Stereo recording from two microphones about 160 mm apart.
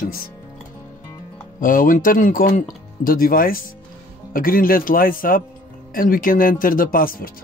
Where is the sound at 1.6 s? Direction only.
55° left (ahead or behind).